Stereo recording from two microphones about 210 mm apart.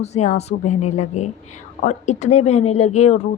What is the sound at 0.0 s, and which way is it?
A woman's voice, 30° left (ahead or behind).